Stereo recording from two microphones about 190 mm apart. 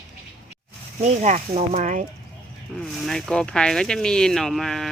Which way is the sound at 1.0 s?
35° right (ahead or behind).